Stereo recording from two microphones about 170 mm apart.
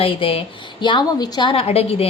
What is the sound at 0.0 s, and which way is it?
Speech, 30° left (ahead or behind).